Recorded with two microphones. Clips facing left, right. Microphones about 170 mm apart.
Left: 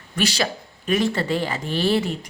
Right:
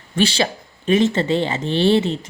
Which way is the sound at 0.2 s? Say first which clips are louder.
Right 4 dB; 25° right (ahead or behind).